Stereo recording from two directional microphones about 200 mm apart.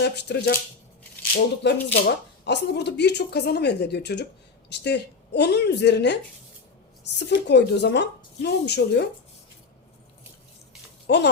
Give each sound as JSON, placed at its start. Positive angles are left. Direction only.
{"t": 0.0, "sound": "speech", "side_deg": 55}
{"t": 1.6, "sound": "speech", "side_deg": 60}
{"t": 7.2, "sound": "speech", "side_deg": 60}
{"t": 11.0, "sound": "a sound", "side_deg": 60}